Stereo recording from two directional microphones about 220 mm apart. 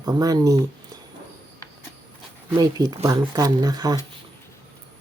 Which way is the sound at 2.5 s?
20° right (ahead or behind).